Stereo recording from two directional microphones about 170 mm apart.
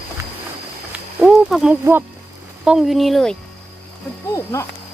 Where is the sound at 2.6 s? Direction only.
Centre (ahead or behind).